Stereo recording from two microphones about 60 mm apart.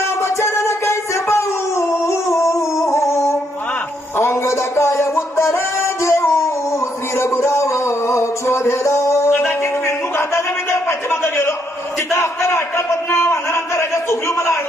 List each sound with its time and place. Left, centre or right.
0.2 s music: left
9.8 s a sound: left
12.1 s a man's voice: left